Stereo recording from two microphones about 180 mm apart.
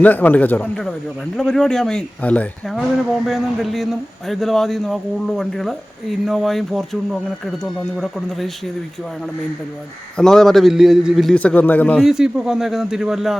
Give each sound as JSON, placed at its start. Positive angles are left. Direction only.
{"t": 0.0, "sound": "a man's voice", "side_deg": 10}
{"t": 10.2, "sound": "speech", "side_deg": 5}